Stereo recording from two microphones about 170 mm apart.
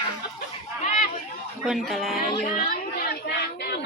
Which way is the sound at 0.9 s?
45° left (ahead or behind).